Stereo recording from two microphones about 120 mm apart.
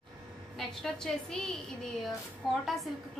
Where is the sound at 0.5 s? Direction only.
5° left (ahead or behind).